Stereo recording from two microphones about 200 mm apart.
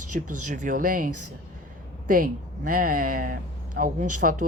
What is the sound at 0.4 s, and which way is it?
Speech, 40° right (ahead or behind).